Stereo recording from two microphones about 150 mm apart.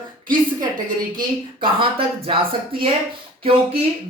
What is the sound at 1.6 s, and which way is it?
Speech, 35° right (ahead or behind).